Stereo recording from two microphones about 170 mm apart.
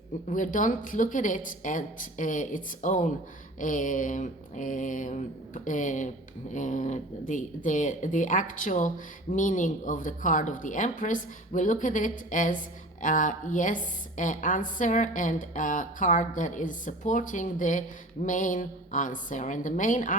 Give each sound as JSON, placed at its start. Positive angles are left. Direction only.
{"t": 0.3, "sound": "a woman's voice", "side_deg": 50}